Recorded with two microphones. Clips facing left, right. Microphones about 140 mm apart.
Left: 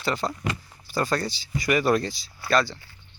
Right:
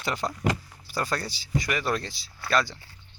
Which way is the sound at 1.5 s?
10° left (ahead or behind).